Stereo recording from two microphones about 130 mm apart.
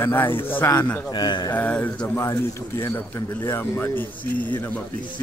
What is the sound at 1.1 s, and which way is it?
Speech, 35° left (ahead or behind).